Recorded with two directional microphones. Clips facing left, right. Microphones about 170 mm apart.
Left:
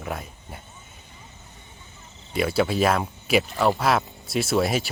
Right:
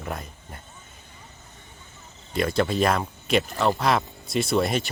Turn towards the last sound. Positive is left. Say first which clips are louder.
# even
turn(degrees=5)  # may be behind; listen again after turning